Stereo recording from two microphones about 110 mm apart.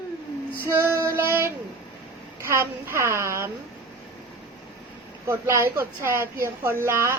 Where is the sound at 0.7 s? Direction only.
20° right (ahead or behind).